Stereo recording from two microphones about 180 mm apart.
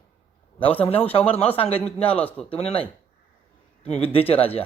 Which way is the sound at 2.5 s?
35° left (ahead or behind).